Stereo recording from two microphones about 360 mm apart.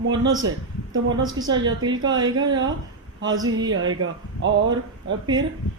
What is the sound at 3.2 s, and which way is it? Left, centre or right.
Speech, right.